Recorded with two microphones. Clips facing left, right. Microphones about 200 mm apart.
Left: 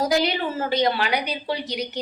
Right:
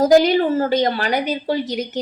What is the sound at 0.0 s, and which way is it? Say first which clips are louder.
A woman's voice: right 9 dB; 45° right (ahead or behind).